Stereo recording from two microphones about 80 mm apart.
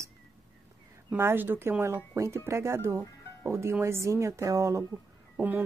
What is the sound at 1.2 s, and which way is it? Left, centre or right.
A woman's voice, right.